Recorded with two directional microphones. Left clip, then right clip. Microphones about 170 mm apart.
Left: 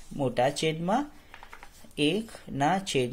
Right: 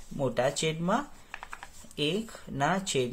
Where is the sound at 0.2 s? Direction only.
10° left (ahead or behind).